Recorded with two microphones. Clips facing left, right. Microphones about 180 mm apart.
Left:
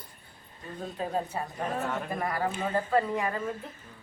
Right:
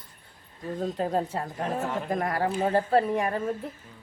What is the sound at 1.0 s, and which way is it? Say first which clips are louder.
A woman's voice: right 1 dB; 75° right (ahead or behind).